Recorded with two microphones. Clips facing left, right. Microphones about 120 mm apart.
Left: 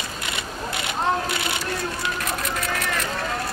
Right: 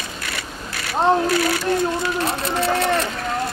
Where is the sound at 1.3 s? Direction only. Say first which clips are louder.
Right 8 dB; 25° left (ahead or behind).